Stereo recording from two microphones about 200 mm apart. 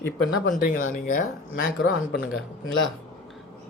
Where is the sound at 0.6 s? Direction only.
40° left (ahead or behind).